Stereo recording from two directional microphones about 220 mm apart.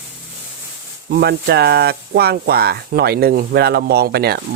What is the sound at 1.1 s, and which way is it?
Speech, 45° right (ahead or behind).